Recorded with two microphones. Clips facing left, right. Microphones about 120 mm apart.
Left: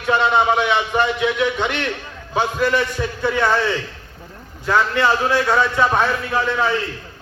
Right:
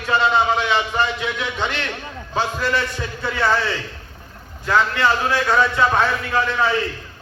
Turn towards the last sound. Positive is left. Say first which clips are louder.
# even
turn(degrees=15)  # may be behind; listen again after turning